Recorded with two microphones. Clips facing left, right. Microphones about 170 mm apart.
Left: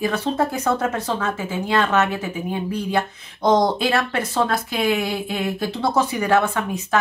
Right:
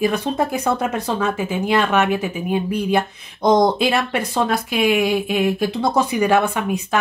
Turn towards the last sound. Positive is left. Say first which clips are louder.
# right 2 dB
turn(degrees=-15)  # may be behind; listen again after turning